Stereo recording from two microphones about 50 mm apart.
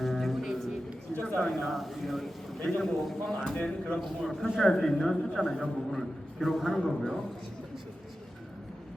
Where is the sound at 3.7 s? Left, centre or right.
Centre.